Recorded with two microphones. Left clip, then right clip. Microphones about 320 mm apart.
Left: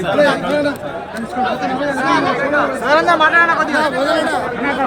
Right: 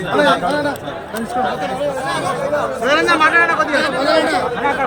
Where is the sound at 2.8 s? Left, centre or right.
Centre.